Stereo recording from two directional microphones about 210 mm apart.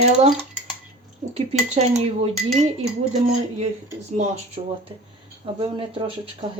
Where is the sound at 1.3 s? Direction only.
30° right (ahead or behind).